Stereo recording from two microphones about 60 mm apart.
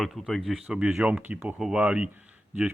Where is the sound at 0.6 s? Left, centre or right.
Centre.